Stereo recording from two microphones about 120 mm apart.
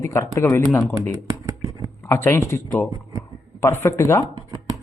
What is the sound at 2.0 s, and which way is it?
A man's voice, 20° left (ahead or behind).